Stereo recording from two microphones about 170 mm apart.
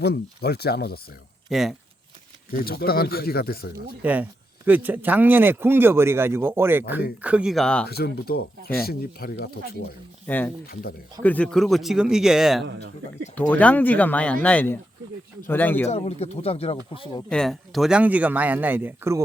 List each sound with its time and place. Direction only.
0.0 s speech: 70° left (ahead or behind)
1.5 s speech: centre (ahead or behind)
2.5 s speech: 60° left (ahead or behind)
4.0 s speech: 10° right (ahead or behind)
7.9 s speech: 65° left (ahead or behind)
10.2 s speech: 10° left (ahead or behind)
12.6 s speech: 90° right
13.5 s speech: 10° left (ahead or behind)
15.9 s speech: 35° left (ahead or behind)
17.2 s speech: centre (ahead or behind); by 19.2 s 15° right (ahead or behind)